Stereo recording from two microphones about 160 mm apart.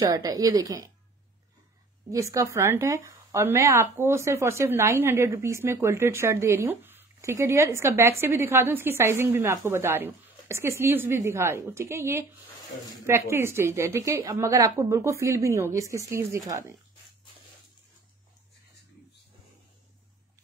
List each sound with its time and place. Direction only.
0.0 s a woman's voice: 25° right (ahead or behind)
2.0 s a woman's voice: 20° right (ahead or behind)